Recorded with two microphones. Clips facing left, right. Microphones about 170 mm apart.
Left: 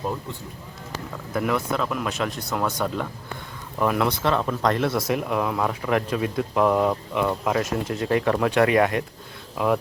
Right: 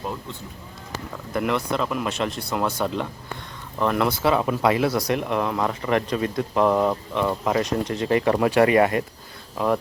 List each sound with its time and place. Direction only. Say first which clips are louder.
1.3 s speech: even; centre (ahead or behind)